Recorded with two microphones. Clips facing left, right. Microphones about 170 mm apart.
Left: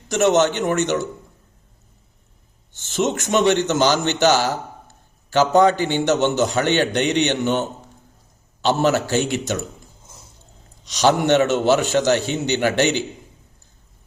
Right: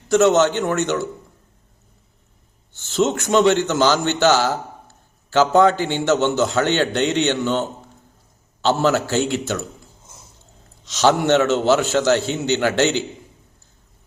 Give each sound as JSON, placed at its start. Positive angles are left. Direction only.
{"t": 0.1, "sound": "a man's voice", "side_deg": 20}
{"t": 2.7, "sound": "a man's voice", "side_deg": 20}
{"t": 8.6, "sound": "a man's voice", "side_deg": 20}
{"t": 10.8, "sound": "a man's voice", "side_deg": 15}